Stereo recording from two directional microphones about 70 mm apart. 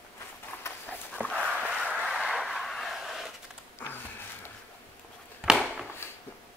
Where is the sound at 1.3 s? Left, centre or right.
Centre.